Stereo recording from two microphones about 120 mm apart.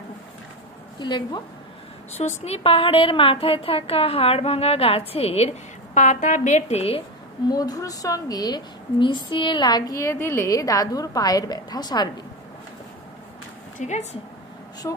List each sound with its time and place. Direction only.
0.9 s a woman's voice: 40° left (ahead or behind)
2.1 s speech: 65° left (ahead or behind)
5.9 s a woman's voice: 90° left; by 7.0 s 60° left (ahead or behind)
7.4 s a woman's voice: 30° left (ahead or behind)
13.7 s a woman's voice: 75° left (ahead or behind)
14.8 s speech: 30° left (ahead or behind)